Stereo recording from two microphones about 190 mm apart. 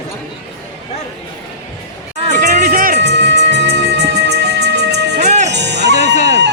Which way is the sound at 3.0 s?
65° right (ahead or behind).